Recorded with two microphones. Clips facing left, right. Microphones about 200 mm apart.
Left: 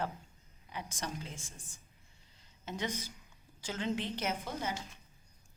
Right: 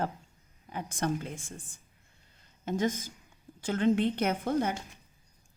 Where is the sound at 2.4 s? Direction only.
50° right (ahead or behind).